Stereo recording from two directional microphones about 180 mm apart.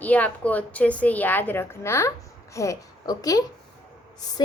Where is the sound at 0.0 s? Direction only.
10° left (ahead or behind).